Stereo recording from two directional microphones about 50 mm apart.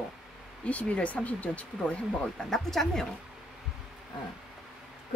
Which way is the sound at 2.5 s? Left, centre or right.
Centre.